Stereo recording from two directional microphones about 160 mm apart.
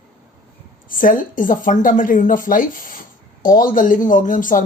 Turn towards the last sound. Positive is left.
turn(degrees=55)  # may be behind; listen again after turning